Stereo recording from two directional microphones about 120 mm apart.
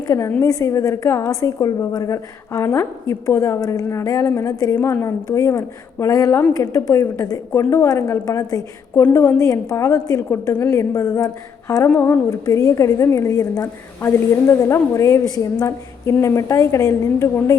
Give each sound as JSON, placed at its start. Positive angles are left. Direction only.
{"t": 0.1, "sound": "a woman's voice", "side_deg": 20}